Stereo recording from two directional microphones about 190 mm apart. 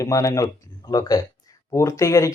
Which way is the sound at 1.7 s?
15° left (ahead or behind).